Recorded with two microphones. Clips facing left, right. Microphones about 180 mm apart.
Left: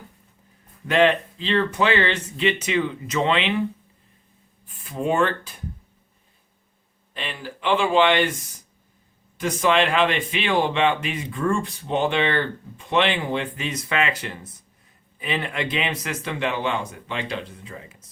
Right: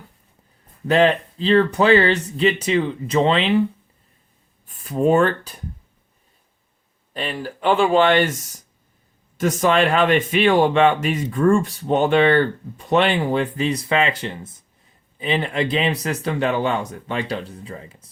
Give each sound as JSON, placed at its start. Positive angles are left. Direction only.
{"t": 0.9, "sound": "speech", "side_deg": -35}
{"t": 4.6, "sound": "speech", "side_deg": -40}
{"t": 7.1, "sound": "speech", "side_deg": -40}